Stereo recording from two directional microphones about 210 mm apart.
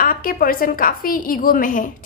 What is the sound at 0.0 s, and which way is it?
A woman's voice, 45° left (ahead or behind).